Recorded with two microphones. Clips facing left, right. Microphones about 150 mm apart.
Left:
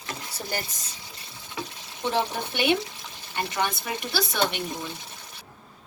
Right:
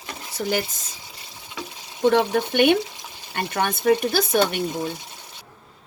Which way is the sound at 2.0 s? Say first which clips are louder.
Right 8 dB; 60° right (ahead or behind).